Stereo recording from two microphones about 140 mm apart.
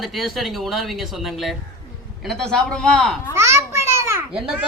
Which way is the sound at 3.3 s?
20° right (ahead or behind).